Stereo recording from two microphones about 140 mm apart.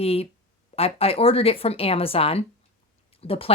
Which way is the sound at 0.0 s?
45° left (ahead or behind).